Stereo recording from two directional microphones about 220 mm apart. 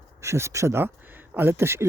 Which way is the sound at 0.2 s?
10° right (ahead or behind).